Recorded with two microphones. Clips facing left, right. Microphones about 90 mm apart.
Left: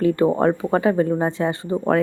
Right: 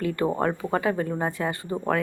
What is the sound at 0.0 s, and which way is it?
A woman's voice, 30° left (ahead or behind).